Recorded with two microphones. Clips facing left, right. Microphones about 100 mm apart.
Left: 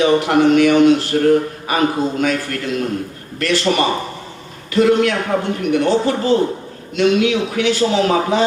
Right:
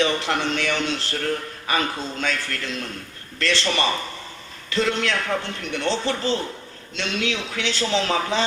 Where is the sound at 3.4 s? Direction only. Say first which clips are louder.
Left 6 dB; 25° right (ahead or behind).